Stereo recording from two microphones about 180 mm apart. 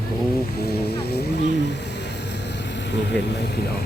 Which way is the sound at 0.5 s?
60° left (ahead or behind).